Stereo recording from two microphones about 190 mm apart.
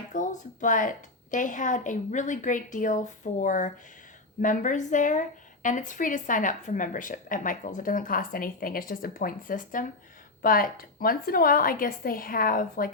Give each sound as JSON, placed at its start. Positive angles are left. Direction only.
{"t": 0.1, "sound": "a woman's voice", "side_deg": 40}